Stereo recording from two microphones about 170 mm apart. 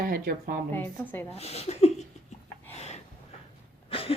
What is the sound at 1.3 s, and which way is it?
Speech, 35° left (ahead or behind).